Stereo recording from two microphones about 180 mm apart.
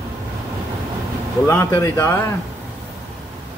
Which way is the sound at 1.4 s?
15° left (ahead or behind).